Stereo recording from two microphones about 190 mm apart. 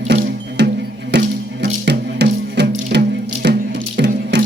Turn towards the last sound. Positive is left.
turn(degrees=-65)  # may be behind; listen again after turning